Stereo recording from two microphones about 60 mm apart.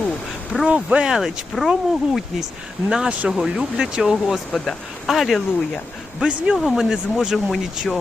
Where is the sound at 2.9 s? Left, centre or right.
Centre.